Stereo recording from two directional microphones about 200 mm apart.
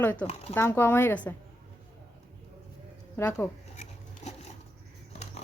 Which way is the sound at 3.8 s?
35° left (ahead or behind).